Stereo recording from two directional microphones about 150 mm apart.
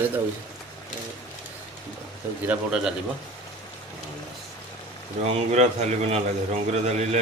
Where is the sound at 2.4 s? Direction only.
5° right (ahead or behind).